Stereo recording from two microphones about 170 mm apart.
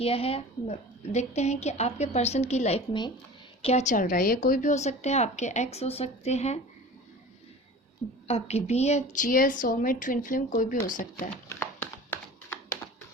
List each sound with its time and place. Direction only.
0.0 s a woman's voice: 35° left (ahead or behind)
8.3 s a woman's voice: 35° left (ahead or behind)
11.6 s a sound: 10° left (ahead or behind)